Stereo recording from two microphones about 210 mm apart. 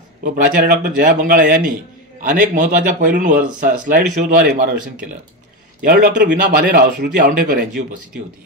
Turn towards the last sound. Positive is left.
turn(degrees=-45)  # may be behind; listen again after turning